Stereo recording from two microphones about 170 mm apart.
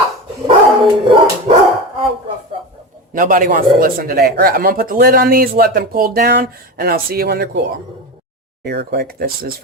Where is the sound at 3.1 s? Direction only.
55° right (ahead or behind).